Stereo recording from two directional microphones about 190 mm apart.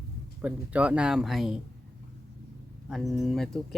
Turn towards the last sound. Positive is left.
turn(degrees=0)  # may be behind; listen again after turning